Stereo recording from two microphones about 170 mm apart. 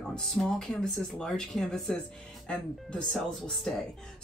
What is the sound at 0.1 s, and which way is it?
Speech, 5° left (ahead or behind).